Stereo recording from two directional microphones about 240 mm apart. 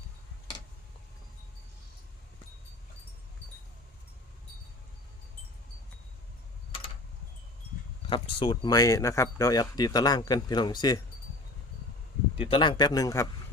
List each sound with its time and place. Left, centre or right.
8.1 s speech: centre
12.4 s speech: left